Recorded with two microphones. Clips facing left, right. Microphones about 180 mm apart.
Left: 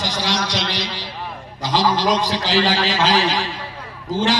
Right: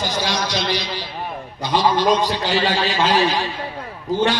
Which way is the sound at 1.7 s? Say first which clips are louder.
Right 1 dB; 90° left.